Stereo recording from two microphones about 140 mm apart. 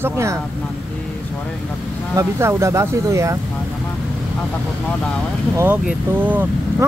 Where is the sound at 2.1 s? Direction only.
20° right (ahead or behind).